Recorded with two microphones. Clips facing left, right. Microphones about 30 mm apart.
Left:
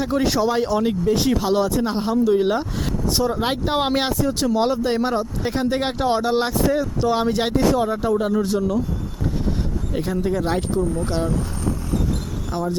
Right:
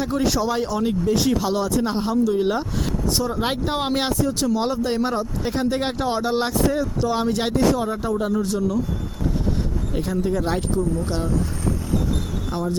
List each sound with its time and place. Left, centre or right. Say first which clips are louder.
0.0 s speech: left 2 dB; centre
9.9 s speech: left 1 dB; centre
12.5 s speech: left 2 dB; centre